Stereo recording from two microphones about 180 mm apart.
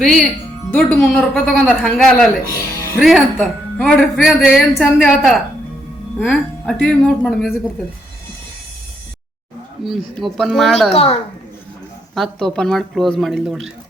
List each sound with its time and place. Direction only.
0.7 s speech: 5° left (ahead or behind)
2.7 s music: 15° left (ahead or behind)
3.0 s speech: centre (ahead or behind)
9.8 s speech: centre (ahead or behind)
10.9 s a woman's voice: 35° left (ahead or behind)
12.1 s speech: centre (ahead or behind)